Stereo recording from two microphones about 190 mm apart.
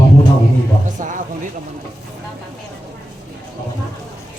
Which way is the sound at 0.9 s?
40° right (ahead or behind).